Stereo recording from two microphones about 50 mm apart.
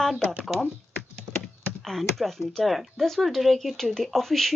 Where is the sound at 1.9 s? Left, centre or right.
Centre.